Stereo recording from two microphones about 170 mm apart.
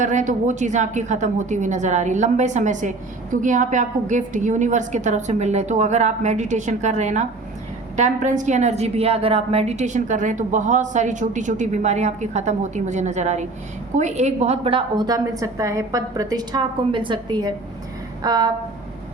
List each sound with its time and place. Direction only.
0.0 s a woman's voice: 45° right (ahead or behind); by 18.5 s 25° right (ahead or behind)